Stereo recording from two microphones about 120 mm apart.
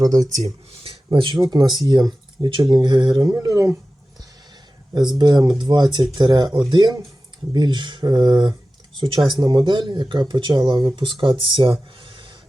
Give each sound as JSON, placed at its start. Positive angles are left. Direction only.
{"t": 0.3, "sound": "speech", "side_deg": -75}
{"t": 0.9, "sound": "speech", "side_deg": -45}
{"t": 4.9, "sound": "speech", "side_deg": -35}